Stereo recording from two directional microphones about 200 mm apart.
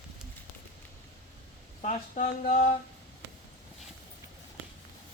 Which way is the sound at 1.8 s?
40° left (ahead or behind).